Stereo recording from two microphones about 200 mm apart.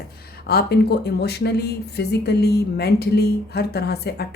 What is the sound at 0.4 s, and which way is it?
Speech, 55° left (ahead or behind).